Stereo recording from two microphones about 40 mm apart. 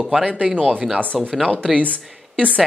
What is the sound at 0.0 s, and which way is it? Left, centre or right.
Speech, right.